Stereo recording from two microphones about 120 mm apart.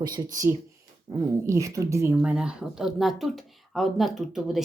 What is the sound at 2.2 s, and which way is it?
Speech, 10° right (ahead or behind).